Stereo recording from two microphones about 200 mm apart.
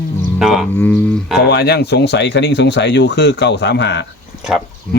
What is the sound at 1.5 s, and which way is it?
Speech, 55° left (ahead or behind).